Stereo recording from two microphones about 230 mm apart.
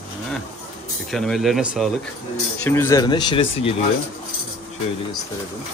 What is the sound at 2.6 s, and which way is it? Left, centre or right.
Speech, centre.